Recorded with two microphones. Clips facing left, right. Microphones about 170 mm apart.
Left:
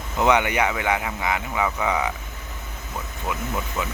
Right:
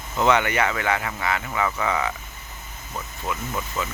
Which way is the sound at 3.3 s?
15° left (ahead or behind).